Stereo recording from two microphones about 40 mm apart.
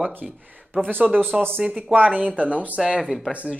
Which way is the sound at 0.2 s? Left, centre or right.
Centre.